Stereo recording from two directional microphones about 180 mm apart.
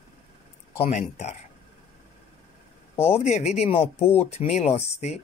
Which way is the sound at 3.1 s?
40° left (ahead or behind).